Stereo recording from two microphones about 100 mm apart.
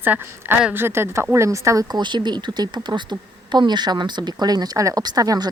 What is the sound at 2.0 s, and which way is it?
Speech, 50° right (ahead or behind).